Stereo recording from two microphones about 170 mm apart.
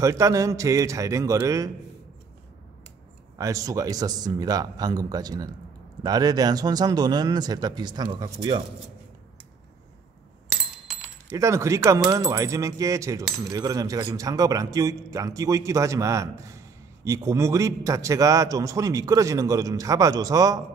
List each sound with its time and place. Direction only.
0.0 s speech: 20° right (ahead or behind)
3.3 s speech: 20° right (ahead or behind)
11.2 s speech: 15° right (ahead or behind)